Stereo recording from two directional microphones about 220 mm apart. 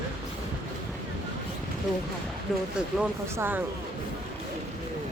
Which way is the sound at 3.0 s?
10° right (ahead or behind).